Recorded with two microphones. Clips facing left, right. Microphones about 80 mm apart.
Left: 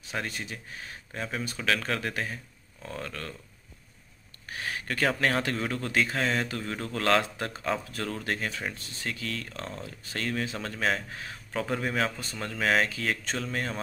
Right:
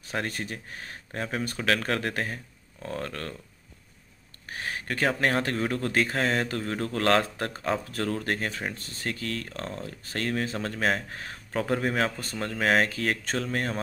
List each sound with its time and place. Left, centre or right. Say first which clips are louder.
0.0 s speech: right 3 dB; right
4.5 s speech: right 1 dB; right